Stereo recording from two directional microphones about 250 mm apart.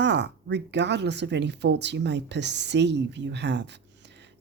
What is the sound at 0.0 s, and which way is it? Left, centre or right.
Speech, right.